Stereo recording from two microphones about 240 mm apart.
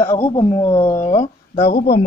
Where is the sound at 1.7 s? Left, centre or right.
Left.